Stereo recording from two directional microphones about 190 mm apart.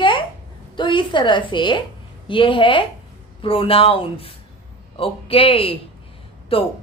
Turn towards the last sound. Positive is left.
turn(degrees=30)  # may be behind; listen again after turning